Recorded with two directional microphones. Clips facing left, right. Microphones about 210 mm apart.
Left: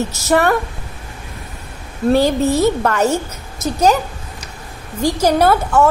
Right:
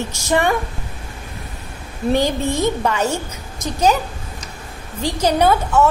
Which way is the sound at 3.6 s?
10° left (ahead or behind).